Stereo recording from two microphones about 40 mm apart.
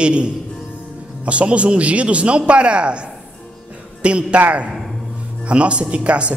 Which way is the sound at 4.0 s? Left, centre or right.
Right.